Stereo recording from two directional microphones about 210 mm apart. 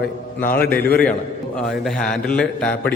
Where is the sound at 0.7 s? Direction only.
45° left (ahead or behind).